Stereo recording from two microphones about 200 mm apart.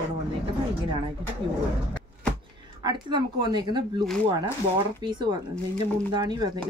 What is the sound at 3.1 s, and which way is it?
A woman's voice, 20° right (ahead or behind).